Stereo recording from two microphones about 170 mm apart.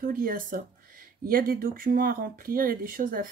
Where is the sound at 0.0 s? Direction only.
60° right (ahead or behind).